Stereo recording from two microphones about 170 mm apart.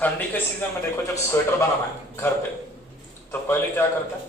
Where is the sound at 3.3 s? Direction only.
15° left (ahead or behind).